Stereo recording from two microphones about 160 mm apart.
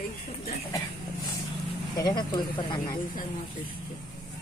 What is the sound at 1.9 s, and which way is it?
Speech, 25° left (ahead or behind).